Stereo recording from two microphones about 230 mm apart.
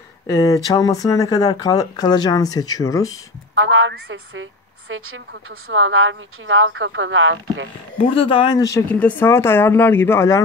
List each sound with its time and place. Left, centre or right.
0.3 s speech: centre
3.5 s a woman's voice: right
8.0 s speech: left